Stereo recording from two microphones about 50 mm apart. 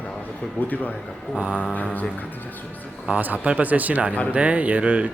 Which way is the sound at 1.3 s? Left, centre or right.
Right.